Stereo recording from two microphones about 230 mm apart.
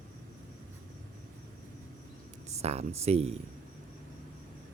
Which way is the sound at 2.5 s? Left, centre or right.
Right.